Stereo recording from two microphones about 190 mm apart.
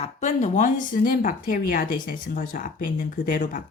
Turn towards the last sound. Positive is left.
turn(degrees=45)  # may be behind; listen again after turning